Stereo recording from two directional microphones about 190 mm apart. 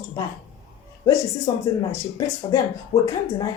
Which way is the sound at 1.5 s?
20° left (ahead or behind).